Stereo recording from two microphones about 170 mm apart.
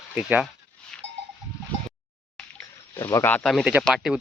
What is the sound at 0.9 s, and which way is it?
Goat, 5° left (ahead or behind).